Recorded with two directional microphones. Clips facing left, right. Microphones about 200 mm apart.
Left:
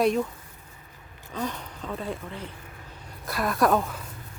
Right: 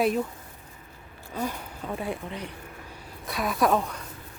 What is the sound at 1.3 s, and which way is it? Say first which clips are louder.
Speech: even; 10° right (ahead or behind).